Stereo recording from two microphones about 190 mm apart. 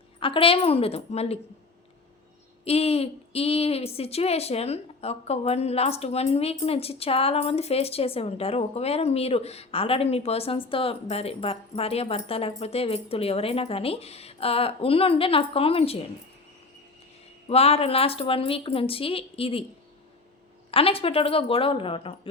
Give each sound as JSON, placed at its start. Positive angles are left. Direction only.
{"t": 0.2, "sound": "a woman's voice", "side_deg": 30}
{"t": 2.6, "sound": "a woman's voice", "side_deg": 30}
{"t": 17.5, "sound": "a woman's voice", "side_deg": 30}
{"t": 20.7, "sound": "a woman's voice", "side_deg": 30}